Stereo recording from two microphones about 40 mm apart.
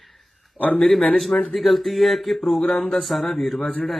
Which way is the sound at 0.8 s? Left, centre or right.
Centre.